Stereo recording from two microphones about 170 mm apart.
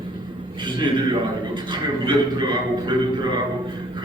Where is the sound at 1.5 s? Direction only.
25° right (ahead or behind).